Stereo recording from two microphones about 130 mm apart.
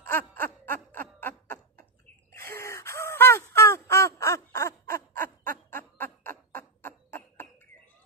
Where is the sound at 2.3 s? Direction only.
20° left (ahead or behind).